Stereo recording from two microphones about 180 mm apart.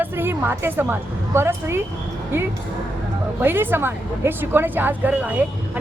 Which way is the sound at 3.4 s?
10° right (ahead or behind).